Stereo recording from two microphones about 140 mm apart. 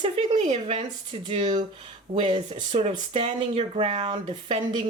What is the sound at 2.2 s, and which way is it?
Speech, 40° right (ahead or behind).